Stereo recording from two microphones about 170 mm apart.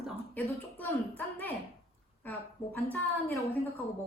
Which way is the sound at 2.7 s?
10° left (ahead or behind).